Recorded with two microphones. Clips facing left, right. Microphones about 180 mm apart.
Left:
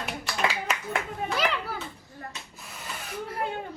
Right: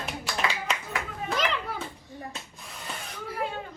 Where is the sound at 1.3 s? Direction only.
5° left (ahead or behind).